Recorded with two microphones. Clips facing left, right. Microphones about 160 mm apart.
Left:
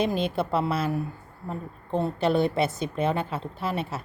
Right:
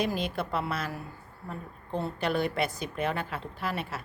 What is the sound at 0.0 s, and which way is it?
A woman's voice, 25° left (ahead or behind).